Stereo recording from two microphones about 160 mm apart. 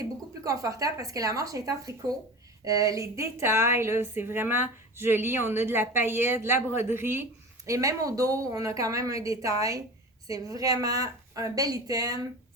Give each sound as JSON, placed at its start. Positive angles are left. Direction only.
{"t": 0.0, "sound": "a woman's voice", "side_deg": -20}